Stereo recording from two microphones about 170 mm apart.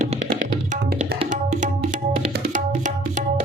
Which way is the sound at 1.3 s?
50° right (ahead or behind).